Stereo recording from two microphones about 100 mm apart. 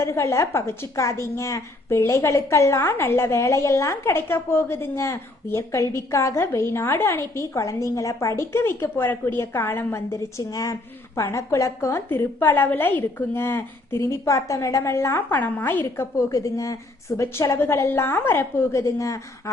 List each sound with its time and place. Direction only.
0.0 s a woman's voice: 25° left (ahead or behind)
16.1 s a woman's voice: 35° left (ahead or behind)